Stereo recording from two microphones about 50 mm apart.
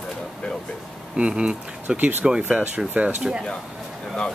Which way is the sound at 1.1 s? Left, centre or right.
Right.